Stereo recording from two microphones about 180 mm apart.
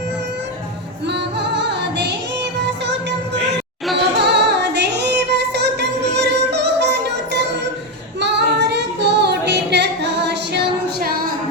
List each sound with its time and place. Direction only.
1.0 s music: 70° right (ahead or behind)
4.3 s music: 70° right (ahead or behind)
8.2 s singing: 70° right (ahead or behind)